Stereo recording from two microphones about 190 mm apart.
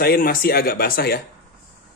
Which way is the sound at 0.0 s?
50° left (ahead or behind).